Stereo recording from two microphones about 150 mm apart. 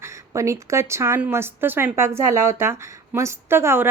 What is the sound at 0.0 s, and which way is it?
A woman's voice, 20° right (ahead or behind).